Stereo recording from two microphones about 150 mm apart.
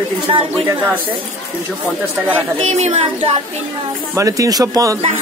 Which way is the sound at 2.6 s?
50° right (ahead or behind).